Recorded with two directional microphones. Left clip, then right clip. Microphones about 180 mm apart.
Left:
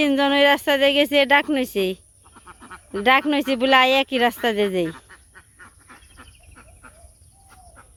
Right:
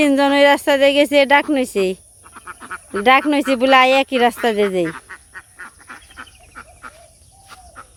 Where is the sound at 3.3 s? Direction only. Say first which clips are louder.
Right 4 dB; 5° right (ahead or behind).